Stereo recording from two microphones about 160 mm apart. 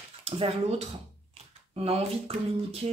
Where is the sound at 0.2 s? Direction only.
40° right (ahead or behind).